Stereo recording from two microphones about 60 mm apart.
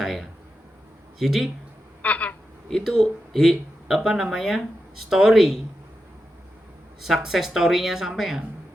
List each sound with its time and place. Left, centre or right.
0.0 s a man's voice: centre
2.0 s a sound: left
2.8 s speech: centre
7.0 s speech: centre